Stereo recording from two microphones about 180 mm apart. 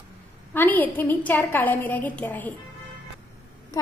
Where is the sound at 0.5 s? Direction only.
10° left (ahead or behind).